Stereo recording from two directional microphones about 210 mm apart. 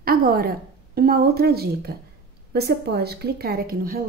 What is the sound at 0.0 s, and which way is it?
A woman's voice, 45° right (ahead or behind).